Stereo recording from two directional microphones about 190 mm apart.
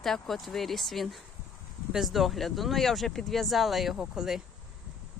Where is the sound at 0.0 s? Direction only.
Centre (ahead or behind).